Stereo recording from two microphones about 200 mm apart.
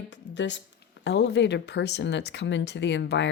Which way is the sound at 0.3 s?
60° left (ahead or behind).